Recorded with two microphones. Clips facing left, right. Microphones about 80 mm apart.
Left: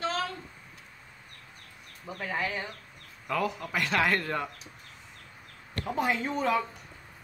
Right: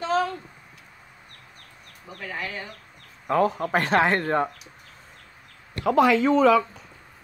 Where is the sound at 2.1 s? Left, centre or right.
Centre.